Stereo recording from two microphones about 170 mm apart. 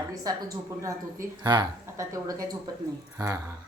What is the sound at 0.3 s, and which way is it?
Speech, 20° right (ahead or behind).